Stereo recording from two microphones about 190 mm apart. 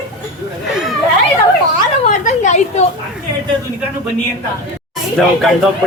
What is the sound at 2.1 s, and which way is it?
Speech, 40° left (ahead or behind).